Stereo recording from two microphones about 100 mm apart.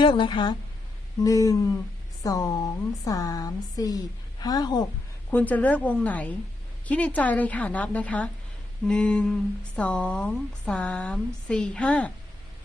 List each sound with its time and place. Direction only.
0.0 s speech: 55° left (ahead or behind)
1.2 s speech: 35° left (ahead or behind)
5.3 s a woman's voice: 15° left (ahead or behind)